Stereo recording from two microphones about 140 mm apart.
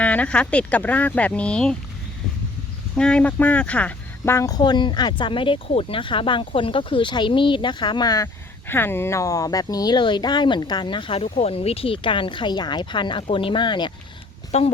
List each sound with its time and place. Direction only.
0.0 s speech: 10° left (ahead or behind)
2.9 s speech: 5° left (ahead or behind); by 13.9 s 35° left (ahead or behind)
14.5 s a woman's voice: 50° left (ahead or behind)